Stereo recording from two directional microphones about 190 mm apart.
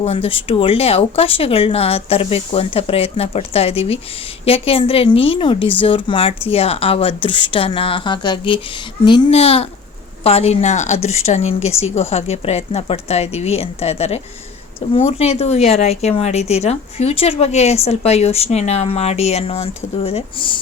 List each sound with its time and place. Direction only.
0.0 s speech: 30° left (ahead or behind)